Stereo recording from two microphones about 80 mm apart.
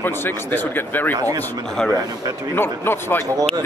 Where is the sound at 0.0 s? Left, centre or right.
Left.